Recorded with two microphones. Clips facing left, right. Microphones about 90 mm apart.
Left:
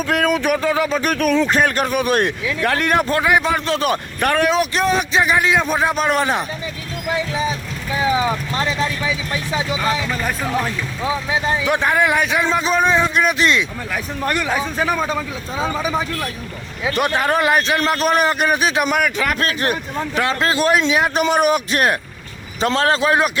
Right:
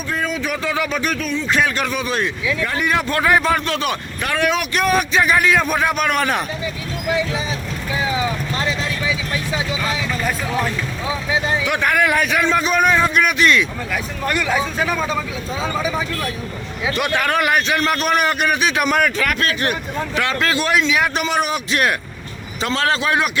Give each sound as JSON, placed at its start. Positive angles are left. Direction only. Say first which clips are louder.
{"t": 0.1, "sound": "speech", "louder": "left 5 dB", "side_deg": 65}
{"t": 0.6, "sound": "a man's voice", "louder": "left 3 dB", "side_deg": 35}
{"t": 1.0, "sound": "speech", "louder": "left 5 dB", "side_deg": 50}
{"t": 3.2, "sound": "a man's voice", "louder": "right 4 dB", "side_deg": 15}
{"t": 3.7, "sound": "a man's voice", "louder": "left 3 dB", "side_deg": 40}
{"t": 4.4, "sound": "a man's voice", "louder": "left 1 dB", "side_deg": 30}
{"t": 9.8, "sound": "a man's voice", "louder": "left 1 dB", "side_deg": 40}
{"t": 11.6, "sound": "a man's voice", "louder": "left 2 dB", "side_deg": 30}
{"t": 16.9, "sound": "a man's voice", "louder": "left 2 dB", "side_deg": 35}
{"t": 18.9, "sound": "a man's voice", "louder": "right 1 dB", "side_deg": 10}
{"t": 19.2, "sound": "a man's voice", "louder": "even", "side_deg": 30}